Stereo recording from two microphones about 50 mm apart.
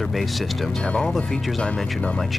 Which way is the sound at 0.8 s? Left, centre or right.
Centre.